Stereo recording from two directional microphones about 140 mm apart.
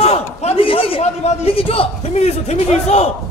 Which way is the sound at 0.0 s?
50° left (ahead or behind).